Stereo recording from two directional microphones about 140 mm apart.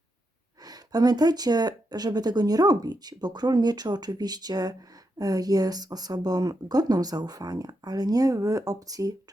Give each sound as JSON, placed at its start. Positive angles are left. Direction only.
{"t": 0.6, "sound": "speech", "side_deg": -30}